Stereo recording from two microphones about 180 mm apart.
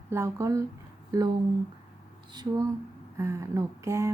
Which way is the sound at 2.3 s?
20° right (ahead or behind).